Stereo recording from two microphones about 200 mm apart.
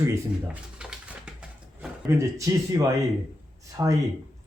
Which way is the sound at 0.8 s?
5° right (ahead or behind).